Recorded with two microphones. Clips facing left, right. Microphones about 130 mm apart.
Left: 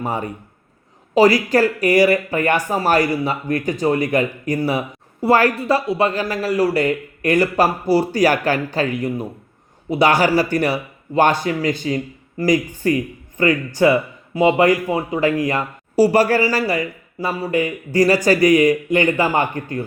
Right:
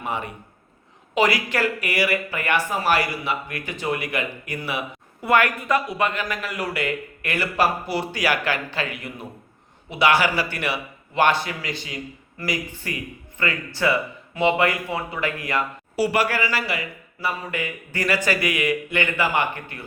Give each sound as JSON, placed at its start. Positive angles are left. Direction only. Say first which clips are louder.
{"t": 0.0, "sound": "a man's voice", "louder": "left 5 dB", "side_deg": 40}
{"t": 13.4, "sound": "speech", "louder": "left 9 dB", "side_deg": 15}
{"t": 14.7, "sound": "a man's voice", "louder": "left 9 dB", "side_deg": 35}
{"t": 15.1, "sound": "speech", "louder": "left 12 dB", "side_deg": 25}
{"t": 16.0, "sound": "a man's voice", "louder": "left 8 dB", "side_deg": 40}